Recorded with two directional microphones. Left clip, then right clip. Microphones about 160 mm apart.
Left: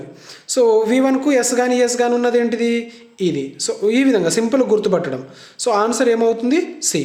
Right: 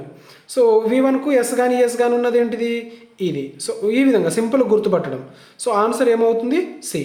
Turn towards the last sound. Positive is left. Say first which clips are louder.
# left 3 dB
turn(degrees=20)  # may be behind; listen again after turning